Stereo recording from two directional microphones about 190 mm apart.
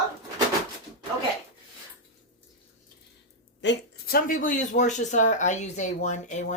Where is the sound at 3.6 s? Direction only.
60° left (ahead or behind).